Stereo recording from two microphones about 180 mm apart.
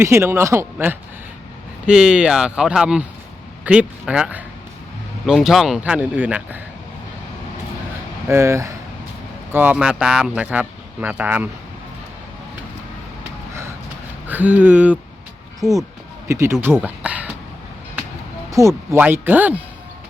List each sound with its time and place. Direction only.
0.0 s speech: 15° right (ahead or behind)
8.3 s speech: 15° right (ahead or behind)
14.3 s speech: 10° right (ahead or behind)
18.9 s speech: 10° right (ahead or behind)